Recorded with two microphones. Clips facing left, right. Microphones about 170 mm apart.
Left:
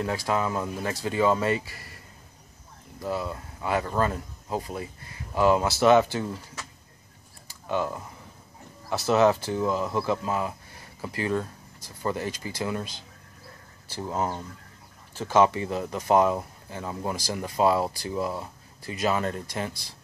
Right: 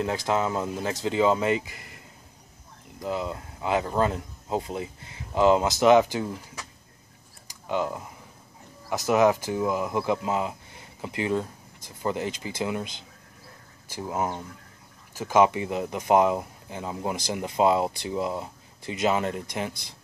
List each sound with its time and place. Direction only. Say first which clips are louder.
0.0 s speech: right 1 dB; 20° right (ahead or behind)
3.0 s speech: right 1 dB; 20° right (ahead or behind)
7.4 s camera: even; 15° right (ahead or behind)
8.9 s speech: even; 15° right (ahead or behind)
13.9 s speech: even; 10° right (ahead or behind)